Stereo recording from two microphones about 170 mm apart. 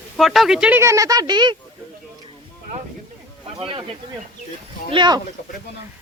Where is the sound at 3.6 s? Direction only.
35° right (ahead or behind).